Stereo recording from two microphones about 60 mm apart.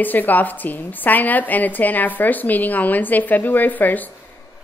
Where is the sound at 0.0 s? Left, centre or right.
Left.